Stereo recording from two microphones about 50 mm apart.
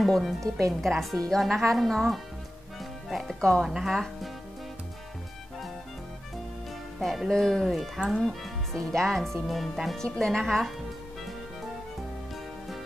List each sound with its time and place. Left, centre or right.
0.0 s speech: centre
3.3 s speech: centre
3.6 s speech: centre
7.0 s speech: centre
7.2 s speech: centre